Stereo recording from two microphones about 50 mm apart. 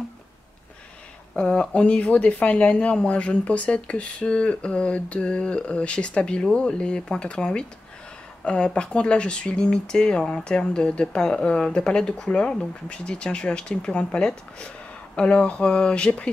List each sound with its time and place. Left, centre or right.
1.5 s speech: left